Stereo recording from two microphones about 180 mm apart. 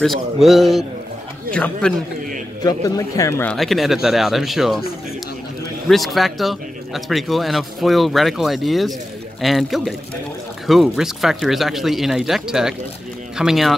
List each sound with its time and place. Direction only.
0.0 s speech: centre (ahead or behind)
2.6 s speech: 20° left (ahead or behind)
3.5 s speech: centre (ahead or behind)
5.9 s speech: centre (ahead or behind)